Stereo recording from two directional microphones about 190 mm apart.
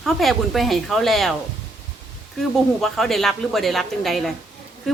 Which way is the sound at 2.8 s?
Centre (ahead or behind).